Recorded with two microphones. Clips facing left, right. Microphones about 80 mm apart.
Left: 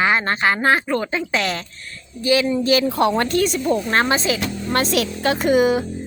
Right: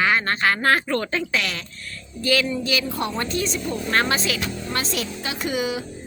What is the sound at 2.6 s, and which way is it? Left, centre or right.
Speech, left.